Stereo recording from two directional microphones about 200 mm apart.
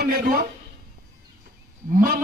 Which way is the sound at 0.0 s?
50° right (ahead or behind).